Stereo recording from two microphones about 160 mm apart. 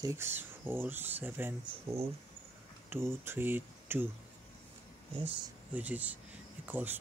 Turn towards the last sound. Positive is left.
turn(degrees=-10)  # may be behind; listen again after turning